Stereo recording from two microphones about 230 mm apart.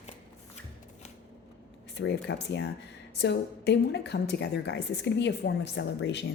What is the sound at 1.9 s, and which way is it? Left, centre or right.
A woman's voice, left.